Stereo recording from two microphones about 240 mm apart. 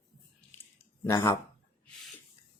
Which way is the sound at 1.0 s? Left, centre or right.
Centre.